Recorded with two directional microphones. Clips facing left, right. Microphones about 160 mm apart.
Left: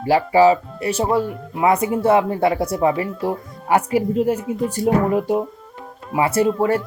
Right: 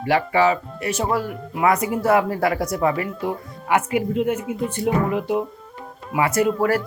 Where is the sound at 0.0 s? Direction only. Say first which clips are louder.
Left 4 dB; 30° left (ahead or behind).